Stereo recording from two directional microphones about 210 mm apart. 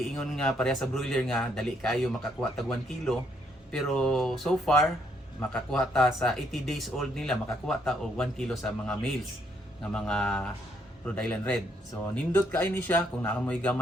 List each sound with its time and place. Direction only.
0.2 s speech: 5° left (ahead or behind)